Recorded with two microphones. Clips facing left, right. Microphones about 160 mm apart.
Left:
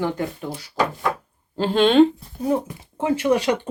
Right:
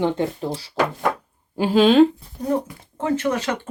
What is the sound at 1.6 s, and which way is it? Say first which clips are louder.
Speech: right 1 dB; 5° right (ahead or behind).